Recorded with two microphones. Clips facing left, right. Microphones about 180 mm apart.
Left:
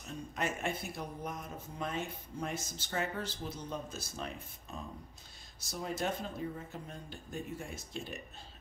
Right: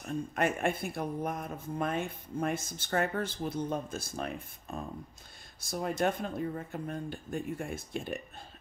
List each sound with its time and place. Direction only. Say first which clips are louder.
0.0 s speech: right 7 dB; 55° right (ahead or behind)